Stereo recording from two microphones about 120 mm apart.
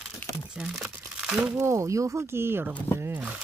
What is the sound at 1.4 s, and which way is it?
Speech, 20° right (ahead or behind).